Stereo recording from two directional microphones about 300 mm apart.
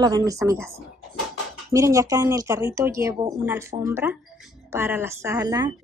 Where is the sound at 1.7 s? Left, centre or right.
Centre.